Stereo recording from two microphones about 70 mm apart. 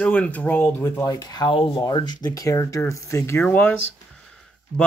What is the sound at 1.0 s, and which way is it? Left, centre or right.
Speech, left.